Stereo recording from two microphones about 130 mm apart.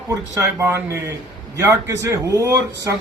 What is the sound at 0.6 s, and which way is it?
Speech, 15° right (ahead or behind).